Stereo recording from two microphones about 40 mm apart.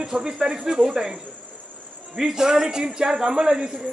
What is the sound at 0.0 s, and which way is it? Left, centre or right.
A man's voice, centre.